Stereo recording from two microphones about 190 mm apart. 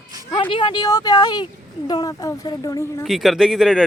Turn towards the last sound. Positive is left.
turn(degrees=0)  # may be behind; listen again after turning